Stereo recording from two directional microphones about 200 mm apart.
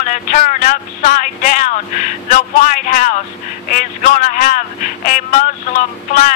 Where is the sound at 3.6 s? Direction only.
40° left (ahead or behind).